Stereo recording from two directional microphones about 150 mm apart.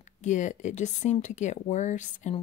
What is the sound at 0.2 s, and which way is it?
Speech, 55° left (ahead or behind).